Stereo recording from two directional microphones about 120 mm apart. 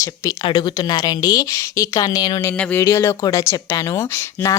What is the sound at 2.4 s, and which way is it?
Speech, 15° left (ahead or behind).